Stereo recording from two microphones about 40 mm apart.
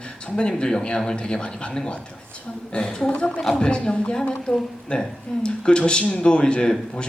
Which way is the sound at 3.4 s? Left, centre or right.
Centre.